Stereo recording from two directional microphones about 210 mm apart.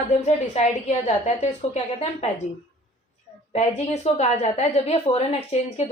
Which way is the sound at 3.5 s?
30° left (ahead or behind).